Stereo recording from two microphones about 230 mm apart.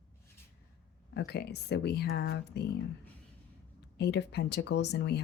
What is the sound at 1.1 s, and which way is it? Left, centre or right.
Speech, left.